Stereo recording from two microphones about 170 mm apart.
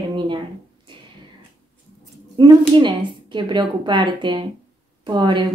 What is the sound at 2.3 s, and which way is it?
A woman's voice, 25° right (ahead or behind).